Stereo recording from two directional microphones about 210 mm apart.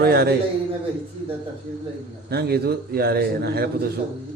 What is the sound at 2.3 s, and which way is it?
A man's voice, 50° right (ahead or behind).